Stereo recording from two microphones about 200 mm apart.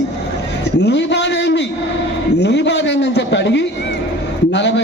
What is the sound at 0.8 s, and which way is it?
A man's voice, 60° left (ahead or behind).